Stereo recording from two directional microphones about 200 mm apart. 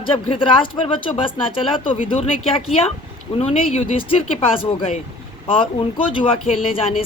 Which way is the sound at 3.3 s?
30° left (ahead or behind).